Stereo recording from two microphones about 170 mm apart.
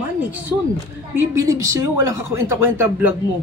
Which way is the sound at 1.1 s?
20° right (ahead or behind).